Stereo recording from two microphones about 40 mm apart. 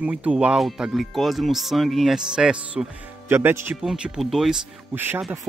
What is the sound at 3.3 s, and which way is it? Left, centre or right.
Speech, right.